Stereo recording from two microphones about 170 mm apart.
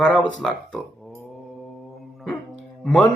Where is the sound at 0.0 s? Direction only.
5° left (ahead or behind).